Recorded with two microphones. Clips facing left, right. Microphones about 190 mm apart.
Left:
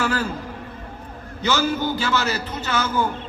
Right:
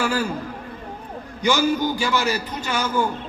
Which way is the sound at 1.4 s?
15° right (ahead or behind).